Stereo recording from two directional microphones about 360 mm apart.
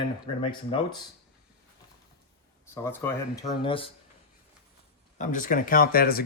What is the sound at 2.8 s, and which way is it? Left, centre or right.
Speech, centre.